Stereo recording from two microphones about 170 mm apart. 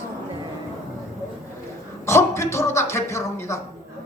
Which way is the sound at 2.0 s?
15° left (ahead or behind).